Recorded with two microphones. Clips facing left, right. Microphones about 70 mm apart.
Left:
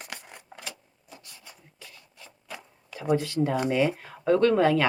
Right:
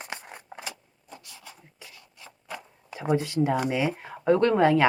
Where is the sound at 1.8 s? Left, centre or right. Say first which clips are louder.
Left 2 dB; centre.